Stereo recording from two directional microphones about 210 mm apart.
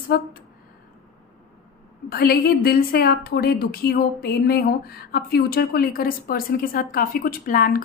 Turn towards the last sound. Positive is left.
turn(degrees=40)  # may be behind; listen again after turning